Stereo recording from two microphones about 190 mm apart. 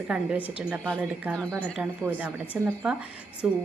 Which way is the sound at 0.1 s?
5° right (ahead or behind).